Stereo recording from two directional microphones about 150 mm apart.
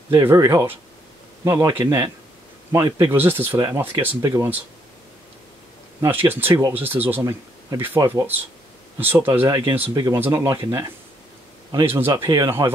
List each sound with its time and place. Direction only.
0.1 s speech: 20° right (ahead or behind)
5.9 s speech: 15° right (ahead or behind)
12.1 s speech: 25° right (ahead or behind)